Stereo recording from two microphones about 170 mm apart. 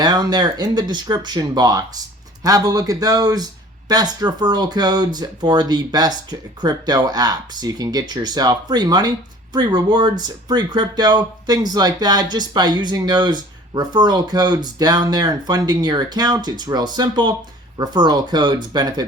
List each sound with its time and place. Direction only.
0.0 s speech: 25° right (ahead or behind)